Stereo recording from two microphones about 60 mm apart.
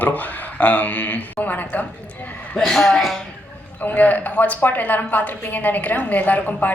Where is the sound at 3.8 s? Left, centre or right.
Left.